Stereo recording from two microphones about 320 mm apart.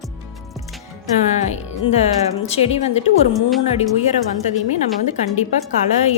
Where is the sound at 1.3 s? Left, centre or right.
Left.